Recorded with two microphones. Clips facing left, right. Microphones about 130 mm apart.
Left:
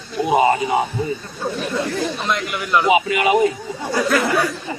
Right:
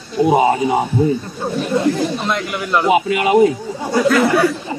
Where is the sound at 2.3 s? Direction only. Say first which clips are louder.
Right 1 dB; 20° right (ahead or behind).